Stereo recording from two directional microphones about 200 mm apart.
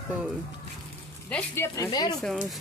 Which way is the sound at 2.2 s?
Centre (ahead or behind).